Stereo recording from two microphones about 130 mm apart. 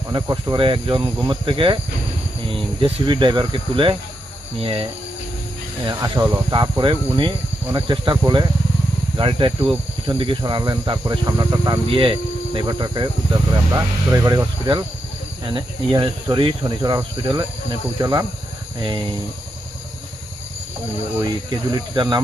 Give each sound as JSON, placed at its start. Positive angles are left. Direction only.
{"t": 0.1, "sound": "speech", "side_deg": -30}
{"t": 4.6, "sound": "cricket", "side_deg": -40}
{"t": 5.8, "sound": "speech", "side_deg": -30}
{"t": 6.5, "sound": "speech", "side_deg": -35}
{"t": 10.1, "sound": "speech", "side_deg": -30}
{"t": 11.9, "sound": "cricket", "side_deg": -45}
{"t": 12.5, "sound": "speech", "side_deg": -35}
{"t": 15.4, "sound": "speech", "side_deg": -35}
{"t": 18.8, "sound": "speech", "side_deg": -35}
{"t": 21.2, "sound": "speech", "side_deg": -35}